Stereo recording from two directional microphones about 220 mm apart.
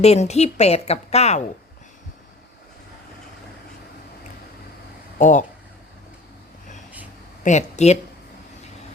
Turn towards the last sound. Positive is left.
turn(degrees=30)  # may be behind; listen again after turning